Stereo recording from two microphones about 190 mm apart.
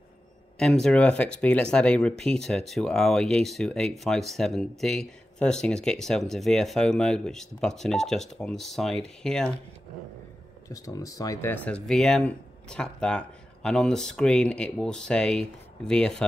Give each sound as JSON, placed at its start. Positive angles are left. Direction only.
{"t": 0.6, "sound": "speech", "side_deg": 0}
{"t": 10.7, "sound": "speech", "side_deg": 15}